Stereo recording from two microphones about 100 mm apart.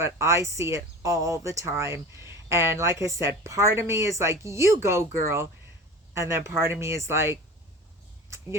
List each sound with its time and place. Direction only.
0.0 s speech: 30° right (ahead or behind)